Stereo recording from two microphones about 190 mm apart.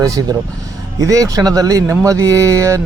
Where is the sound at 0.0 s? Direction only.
20° right (ahead or behind).